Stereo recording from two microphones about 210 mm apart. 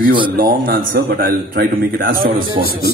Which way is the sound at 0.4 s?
45° right (ahead or behind).